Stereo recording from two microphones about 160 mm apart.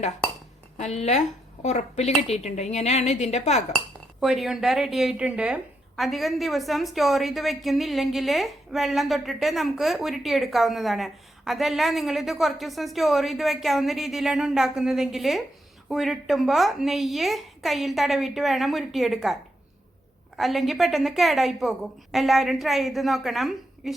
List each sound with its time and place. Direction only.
0.8 s a woman's voice: 45° left (ahead or behind)
4.2 s a woman's voice: centre (ahead or behind)